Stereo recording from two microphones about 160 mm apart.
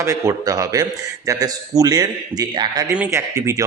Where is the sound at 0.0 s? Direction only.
20° right (ahead or behind).